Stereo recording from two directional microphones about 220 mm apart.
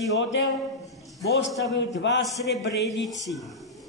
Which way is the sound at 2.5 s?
55° left (ahead or behind).